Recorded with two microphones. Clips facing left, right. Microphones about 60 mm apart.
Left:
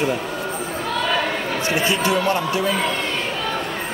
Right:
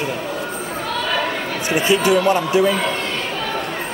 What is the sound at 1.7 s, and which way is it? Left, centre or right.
Speech, right.